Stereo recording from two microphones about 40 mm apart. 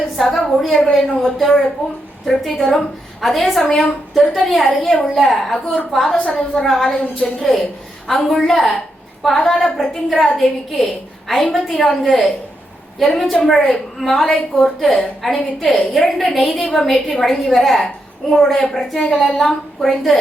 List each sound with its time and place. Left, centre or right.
0.0 s a sound: centre
0.8 s a woman's voice: centre
4.6 s speech: centre
5.0 s a woman's voice: centre
6.1 s a woman's voice: left
6.3 s a woman's voice: centre
13.3 s a woman's voice: centre